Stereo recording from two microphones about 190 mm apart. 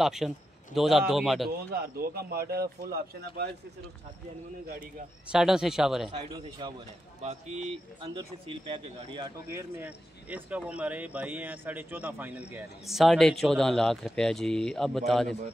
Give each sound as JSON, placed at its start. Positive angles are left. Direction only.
{"t": 0.0, "sound": "speech", "side_deg": 0}
{"t": 1.7, "sound": "a man's voice", "side_deg": -55}
{"t": 5.3, "sound": "speech", "side_deg": -5}
{"t": 6.6, "sound": "speech", "side_deg": -25}
{"t": 9.5, "sound": "speech", "side_deg": -10}